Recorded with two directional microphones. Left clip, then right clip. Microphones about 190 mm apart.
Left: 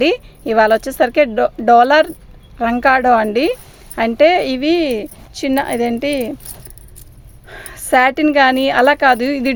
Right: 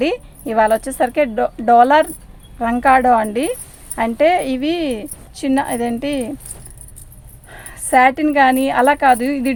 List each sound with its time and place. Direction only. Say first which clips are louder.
0.0 s speech: left 4 dB; 45° left (ahead or behind)
7.4 s a woman's voice: left 2 dB; 45° left (ahead or behind)